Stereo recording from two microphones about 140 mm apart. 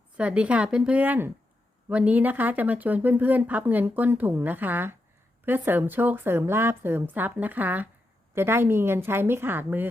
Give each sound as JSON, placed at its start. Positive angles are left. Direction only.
{"t": 0.2, "sound": "speech", "side_deg": -10}